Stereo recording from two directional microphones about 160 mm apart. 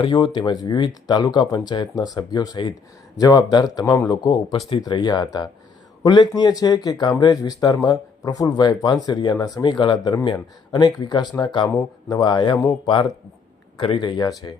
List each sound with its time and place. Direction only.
0.0 s speech: 25° left (ahead or behind)